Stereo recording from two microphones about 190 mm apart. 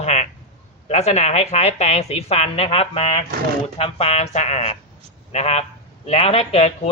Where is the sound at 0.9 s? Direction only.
35° left (ahead or behind).